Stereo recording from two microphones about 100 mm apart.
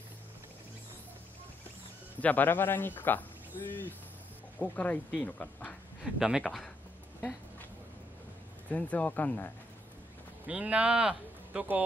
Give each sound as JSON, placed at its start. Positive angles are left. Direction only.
{"t": 2.1, "sound": "speech", "side_deg": 15}
{"t": 6.1, "sound": "speech", "side_deg": -5}
{"t": 8.6, "sound": "speech", "side_deg": 15}
{"t": 10.4, "sound": "speech", "side_deg": -15}